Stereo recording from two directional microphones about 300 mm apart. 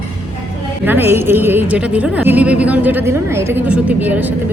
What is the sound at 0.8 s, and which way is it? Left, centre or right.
Speech, centre.